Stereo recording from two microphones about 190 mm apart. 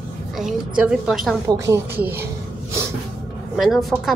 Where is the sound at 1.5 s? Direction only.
15° right (ahead or behind).